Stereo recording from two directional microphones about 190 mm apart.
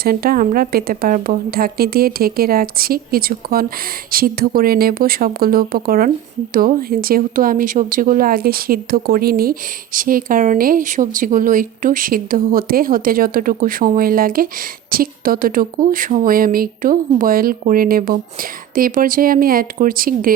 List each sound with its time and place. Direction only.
0.0 s speech: 50° right (ahead or behind)